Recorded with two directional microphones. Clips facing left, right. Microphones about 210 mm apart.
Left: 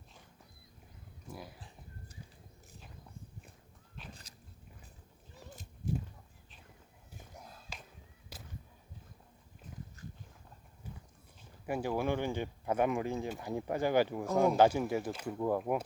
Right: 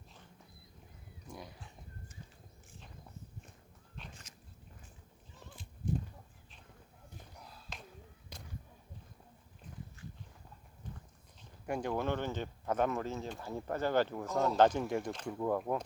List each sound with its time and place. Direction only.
1.3 s speech: 5° left (ahead or behind)
4.1 s biting: 35° left (ahead or behind)
5.8 s a sound: 5° right (ahead or behind)
7.2 s a sound: 45° left (ahead or behind)
8.3 s whip: 5° left (ahead or behind)
10.9 s horse: 10° left (ahead or behind)
11.6 s speech: 5° left (ahead or behind)